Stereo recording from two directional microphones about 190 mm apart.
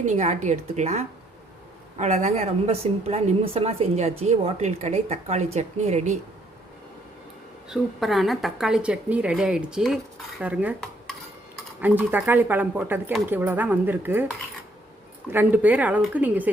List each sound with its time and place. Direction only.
0.0 s a woman's voice: 40° right (ahead or behind)
7.7 s a woman's voice: centre (ahead or behind)
11.8 s speech: 10° right (ahead or behind)
15.3 s speech: 10° right (ahead or behind)